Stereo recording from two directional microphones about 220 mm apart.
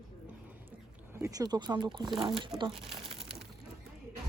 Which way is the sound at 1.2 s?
15° right (ahead or behind).